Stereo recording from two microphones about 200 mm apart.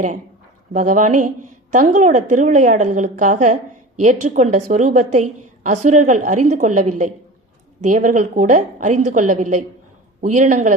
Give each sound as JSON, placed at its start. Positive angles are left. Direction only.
{"t": 0.7, "sound": "a woman's voice", "side_deg": -40}